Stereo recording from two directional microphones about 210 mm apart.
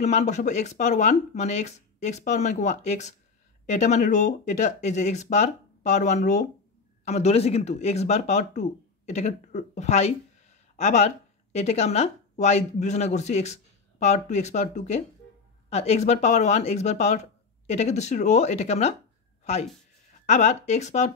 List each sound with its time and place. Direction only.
0.0 s speech: 35° left (ahead or behind)
20.2 s speech: 35° left (ahead or behind)